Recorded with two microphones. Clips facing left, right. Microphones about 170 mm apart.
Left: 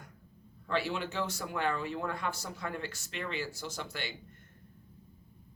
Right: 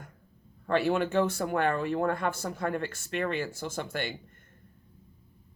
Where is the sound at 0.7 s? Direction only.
50° right (ahead or behind).